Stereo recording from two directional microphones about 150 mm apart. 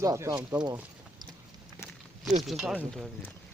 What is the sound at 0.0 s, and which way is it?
Speech, 20° right (ahead or behind).